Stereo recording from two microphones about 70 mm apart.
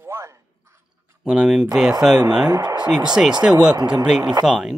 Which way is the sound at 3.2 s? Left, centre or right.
Centre.